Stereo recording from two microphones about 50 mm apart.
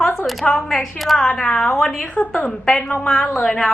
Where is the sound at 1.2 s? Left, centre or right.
Centre.